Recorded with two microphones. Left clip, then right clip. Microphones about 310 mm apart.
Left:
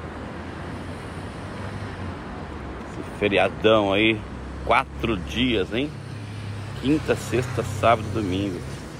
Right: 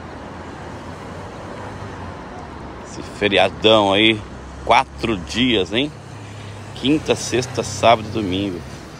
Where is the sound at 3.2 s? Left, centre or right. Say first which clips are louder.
Right 5 dB; centre.